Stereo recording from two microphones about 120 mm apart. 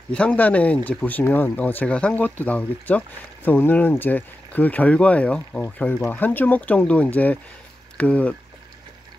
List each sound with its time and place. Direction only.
0.1 s speech: 10° left (ahead or behind)